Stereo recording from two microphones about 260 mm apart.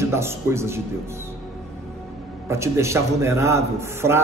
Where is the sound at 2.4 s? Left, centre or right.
Centre.